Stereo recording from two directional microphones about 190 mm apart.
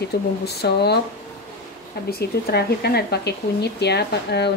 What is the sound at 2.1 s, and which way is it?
Speech, 55° left (ahead or behind).